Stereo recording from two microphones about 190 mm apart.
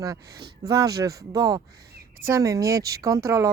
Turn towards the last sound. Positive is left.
turn(degrees=-15)  # may be behind; listen again after turning